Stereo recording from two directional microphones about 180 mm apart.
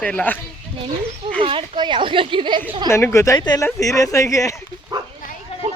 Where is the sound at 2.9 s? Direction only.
15° left (ahead or behind).